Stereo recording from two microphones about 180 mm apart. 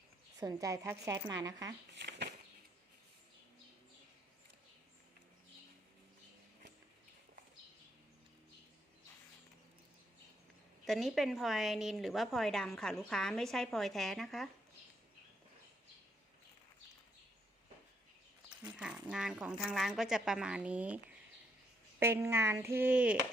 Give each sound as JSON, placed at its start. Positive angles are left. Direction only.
{"t": 0.3, "sound": "speech", "side_deg": -15}
{"t": 2.0, "sound": "bird flight", "side_deg": -70}
{"t": 10.8, "sound": "a woman's voice", "side_deg": 0}
{"t": 18.6, "sound": "a sound", "side_deg": -5}
{"t": 19.0, "sound": "a woman's voice", "side_deg": -5}